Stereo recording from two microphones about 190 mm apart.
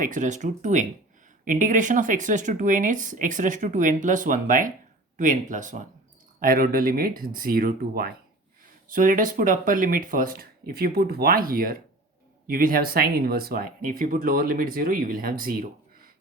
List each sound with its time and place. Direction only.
0.0 s speech: 40° right (ahead or behind)